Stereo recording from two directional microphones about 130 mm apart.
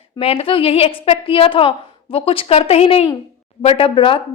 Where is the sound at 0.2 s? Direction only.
50° left (ahead or behind).